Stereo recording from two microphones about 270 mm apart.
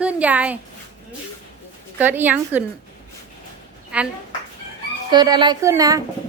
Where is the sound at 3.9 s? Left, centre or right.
Centre.